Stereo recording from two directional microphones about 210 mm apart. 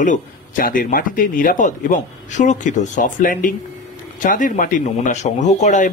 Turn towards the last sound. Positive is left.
turn(degrees=35)  # may be behind; listen again after turning